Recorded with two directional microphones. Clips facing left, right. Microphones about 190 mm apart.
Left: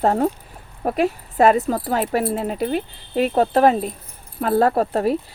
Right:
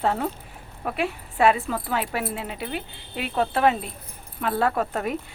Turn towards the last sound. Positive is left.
turn(degrees=35)  # may be behind; listen again after turning